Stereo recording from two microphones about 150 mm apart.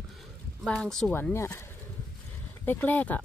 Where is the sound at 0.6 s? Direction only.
5° left (ahead or behind).